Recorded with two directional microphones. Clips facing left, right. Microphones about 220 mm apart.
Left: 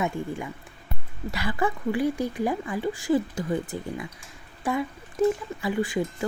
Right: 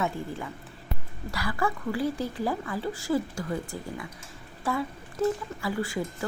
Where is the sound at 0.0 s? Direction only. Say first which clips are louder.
Left 2 dB; 15° left (ahead or behind).